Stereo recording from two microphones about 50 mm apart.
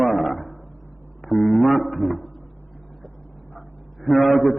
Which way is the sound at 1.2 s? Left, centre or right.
Left.